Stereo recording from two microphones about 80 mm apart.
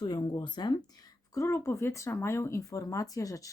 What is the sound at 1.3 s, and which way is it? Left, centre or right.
Speech, left.